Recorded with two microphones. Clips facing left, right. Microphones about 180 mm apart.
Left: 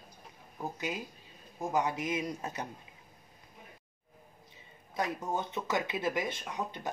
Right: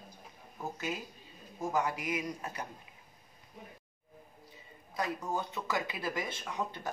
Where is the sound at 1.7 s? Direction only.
20° left (ahead or behind).